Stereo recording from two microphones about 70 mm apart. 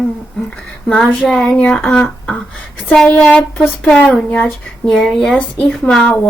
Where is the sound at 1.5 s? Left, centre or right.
Centre.